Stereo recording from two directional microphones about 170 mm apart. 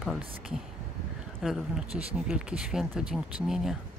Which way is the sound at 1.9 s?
35° right (ahead or behind).